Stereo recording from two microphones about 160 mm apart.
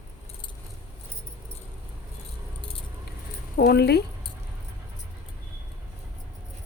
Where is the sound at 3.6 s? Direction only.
90° left.